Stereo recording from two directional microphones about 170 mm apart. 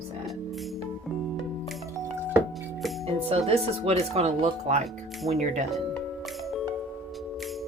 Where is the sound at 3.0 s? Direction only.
35° right (ahead or behind).